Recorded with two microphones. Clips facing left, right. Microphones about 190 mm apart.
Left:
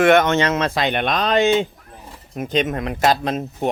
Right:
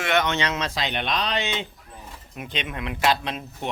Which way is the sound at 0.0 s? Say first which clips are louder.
Left 9 dB; 50° left (ahead or behind).